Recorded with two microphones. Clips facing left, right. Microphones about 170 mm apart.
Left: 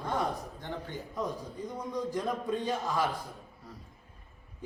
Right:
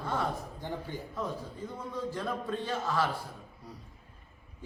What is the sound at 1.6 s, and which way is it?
A man's voice, 15° left (ahead or behind).